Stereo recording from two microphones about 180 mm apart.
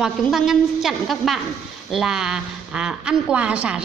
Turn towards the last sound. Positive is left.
turn(degrees=-5)  # may be behind; listen again after turning